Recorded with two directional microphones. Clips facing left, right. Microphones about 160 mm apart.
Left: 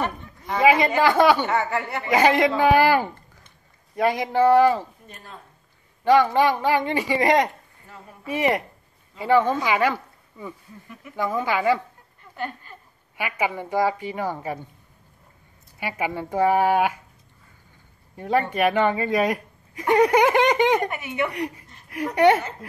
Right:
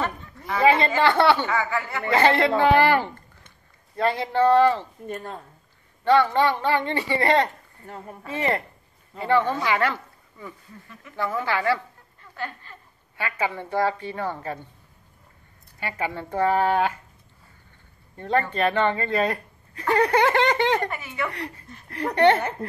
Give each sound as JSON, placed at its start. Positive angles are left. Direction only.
{"t": 0.0, "sound": "speech", "side_deg": 20}
{"t": 2.0, "sound": "a woman's voice", "side_deg": 15}
{"t": 5.0, "sound": "speech", "side_deg": -50}
{"t": 6.0, "sound": "a woman's voice", "side_deg": 15}
{"t": 7.8, "sound": "speech", "side_deg": -55}
{"t": 8.3, "sound": "a woman's voice", "side_deg": 15}
{"t": 12.4, "sound": "a sound", "side_deg": 15}
{"t": 13.2, "sound": "a woman's voice", "side_deg": 10}
{"t": 15.8, "sound": "a woman's voice", "side_deg": 15}
{"t": 18.1, "sound": "speech", "side_deg": 10}